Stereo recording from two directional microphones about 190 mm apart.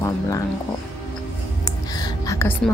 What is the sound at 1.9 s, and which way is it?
Music, 20° left (ahead or behind).